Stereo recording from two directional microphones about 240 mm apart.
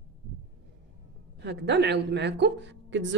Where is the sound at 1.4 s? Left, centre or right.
Right.